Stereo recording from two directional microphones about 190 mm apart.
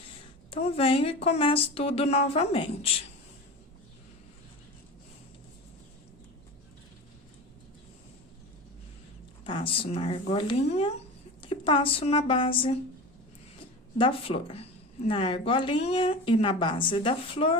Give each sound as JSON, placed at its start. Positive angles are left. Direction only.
{"t": 0.5, "sound": "speech", "side_deg": 30}
{"t": 9.4, "sound": "speech", "side_deg": 25}
{"t": 14.0, "sound": "speech", "side_deg": 30}